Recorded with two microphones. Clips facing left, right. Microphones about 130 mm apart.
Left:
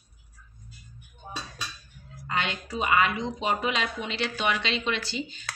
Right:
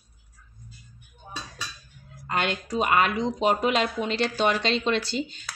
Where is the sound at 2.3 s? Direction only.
50° right (ahead or behind).